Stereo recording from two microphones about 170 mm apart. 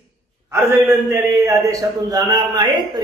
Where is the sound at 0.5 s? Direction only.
15° right (ahead or behind).